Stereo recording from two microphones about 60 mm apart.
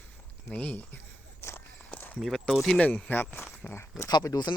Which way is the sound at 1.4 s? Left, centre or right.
Left.